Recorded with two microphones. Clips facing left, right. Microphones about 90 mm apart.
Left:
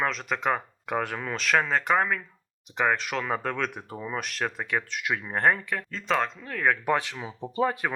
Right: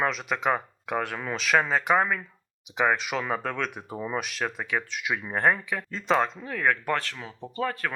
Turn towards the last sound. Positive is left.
turn(degrees=15)  # may be behind; listen again after turning